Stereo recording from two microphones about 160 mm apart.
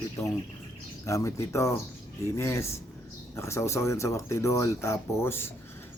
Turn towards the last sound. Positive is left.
turn(degrees=15)  # may be behind; listen again after turning